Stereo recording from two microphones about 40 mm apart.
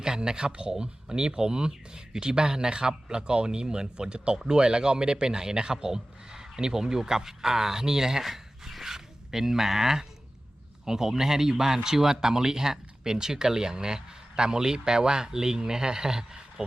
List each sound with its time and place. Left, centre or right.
0.0 s a man's voice: centre